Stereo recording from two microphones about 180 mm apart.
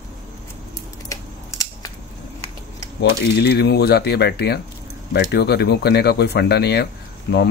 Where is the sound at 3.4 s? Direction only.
65° left (ahead or behind).